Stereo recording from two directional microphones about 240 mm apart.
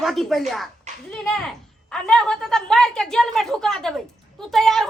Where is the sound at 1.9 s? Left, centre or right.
Centre.